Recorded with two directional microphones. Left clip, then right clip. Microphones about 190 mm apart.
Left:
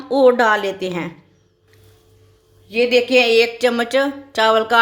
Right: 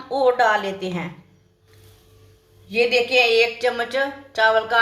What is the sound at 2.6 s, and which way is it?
Speech, 55° left (ahead or behind).